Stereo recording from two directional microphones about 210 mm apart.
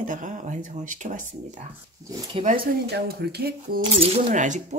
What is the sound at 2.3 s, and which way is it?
Speech, 40° right (ahead or behind).